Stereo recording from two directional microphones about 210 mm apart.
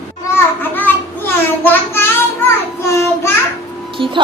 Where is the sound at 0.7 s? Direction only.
10° left (ahead or behind).